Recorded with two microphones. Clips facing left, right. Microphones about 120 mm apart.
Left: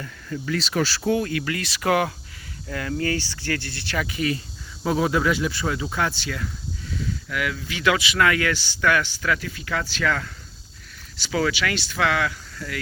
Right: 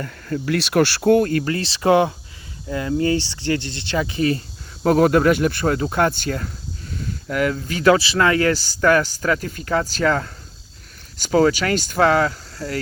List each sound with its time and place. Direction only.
0.0 s speech: 60° right (ahead or behind); by 4.4 s 35° right (ahead or behind)
4.8 s speech: 55° right (ahead or behind); by 12.8 s 40° right (ahead or behind)